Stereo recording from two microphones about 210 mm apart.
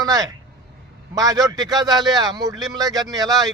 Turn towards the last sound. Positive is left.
turn(degrees=-20)  # may be behind; listen again after turning